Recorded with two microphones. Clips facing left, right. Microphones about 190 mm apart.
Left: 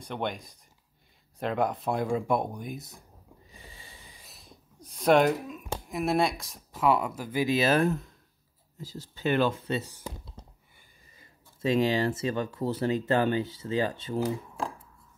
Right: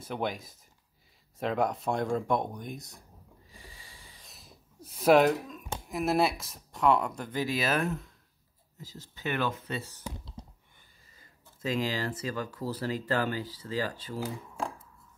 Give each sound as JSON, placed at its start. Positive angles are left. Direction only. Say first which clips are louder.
{"t": 0.0, "sound": "speech", "louder": "even", "side_deg": -5}
{"t": 3.5, "sound": "snort", "louder": "left 1 dB", "side_deg": 25}
{"t": 4.2, "sound": "speech", "louder": "left 2 dB", "side_deg": 0}
{"t": 7.4, "sound": "speech", "louder": "left 6 dB", "side_deg": 25}
{"t": 11.1, "sound": "speech", "louder": "left 1 dB", "side_deg": 25}